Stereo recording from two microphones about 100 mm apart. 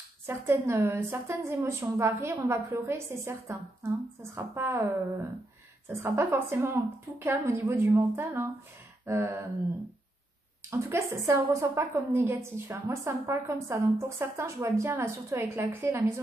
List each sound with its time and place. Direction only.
0.3 s a woman's voice: 25° right (ahead or behind)
6.0 s a woman's voice: 25° right (ahead or behind)
10.7 s a woman's voice: 30° right (ahead or behind)